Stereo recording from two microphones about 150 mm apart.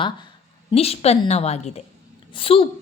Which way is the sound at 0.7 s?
40° left (ahead or behind).